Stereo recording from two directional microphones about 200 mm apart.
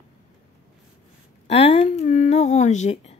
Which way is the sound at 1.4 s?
30° left (ahead or behind).